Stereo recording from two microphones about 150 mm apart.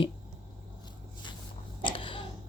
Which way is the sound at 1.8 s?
35° left (ahead or behind).